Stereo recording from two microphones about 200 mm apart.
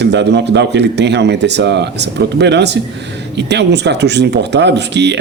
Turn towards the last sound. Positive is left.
turn(degrees=-60)  # may be behind; listen again after turning